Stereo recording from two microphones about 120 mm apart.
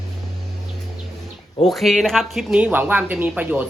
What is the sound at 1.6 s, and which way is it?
Speech, centre (ahead or behind).